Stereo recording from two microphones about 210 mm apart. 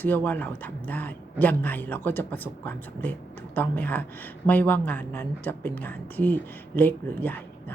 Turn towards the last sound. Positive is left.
turn(degrees=10)  # may be behind; listen again after turning